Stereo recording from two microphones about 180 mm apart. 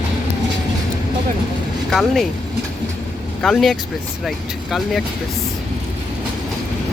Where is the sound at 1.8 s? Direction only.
Centre (ahead or behind).